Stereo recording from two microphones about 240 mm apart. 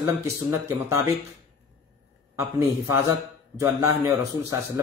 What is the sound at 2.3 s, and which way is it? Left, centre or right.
Speech, centre.